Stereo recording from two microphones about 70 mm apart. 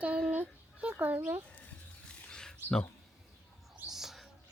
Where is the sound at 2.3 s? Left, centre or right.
Centre.